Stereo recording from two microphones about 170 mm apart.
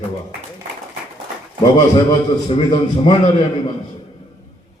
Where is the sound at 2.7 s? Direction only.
30° left (ahead or behind).